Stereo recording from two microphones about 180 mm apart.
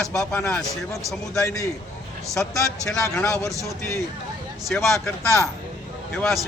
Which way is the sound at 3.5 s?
20° right (ahead or behind).